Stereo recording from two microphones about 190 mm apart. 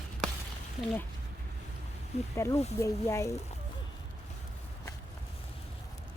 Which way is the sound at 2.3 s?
15° left (ahead or behind).